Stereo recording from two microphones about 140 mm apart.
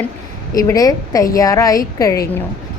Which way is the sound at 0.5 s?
25° left (ahead or behind).